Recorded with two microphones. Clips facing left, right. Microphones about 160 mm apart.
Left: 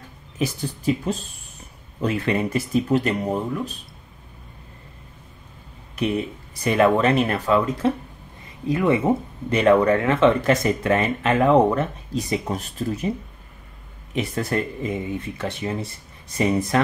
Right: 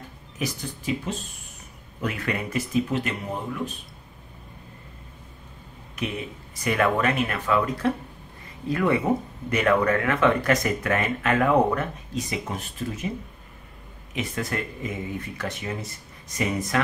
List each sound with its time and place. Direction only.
0.4 s speech: 30° left (ahead or behind)
6.6 s speech: 25° left (ahead or behind)
14.1 s speech: 35° left (ahead or behind)